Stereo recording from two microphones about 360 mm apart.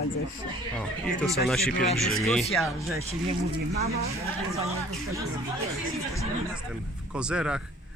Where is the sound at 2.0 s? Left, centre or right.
Centre.